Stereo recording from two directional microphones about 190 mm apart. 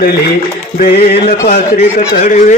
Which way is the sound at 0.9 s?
55° left (ahead or behind).